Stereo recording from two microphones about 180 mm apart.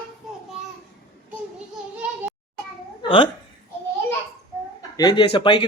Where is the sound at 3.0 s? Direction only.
30° left (ahead or behind).